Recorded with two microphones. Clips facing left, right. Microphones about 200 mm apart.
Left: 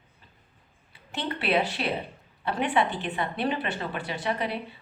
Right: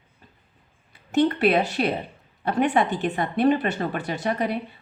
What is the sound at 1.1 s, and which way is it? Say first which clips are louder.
A woman's voice: right 8 dB; 45° right (ahead or behind).